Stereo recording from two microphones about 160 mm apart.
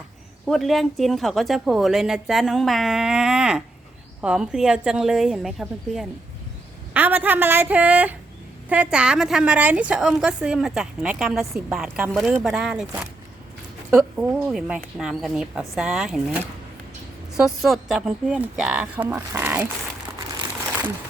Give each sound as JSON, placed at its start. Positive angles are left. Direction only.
{"t": 0.4, "sound": "a woman's voice", "side_deg": 0}
{"t": 6.9, "sound": "a woman's voice", "side_deg": -10}
{"t": 13.9, "sound": "a woman's voice", "side_deg": -5}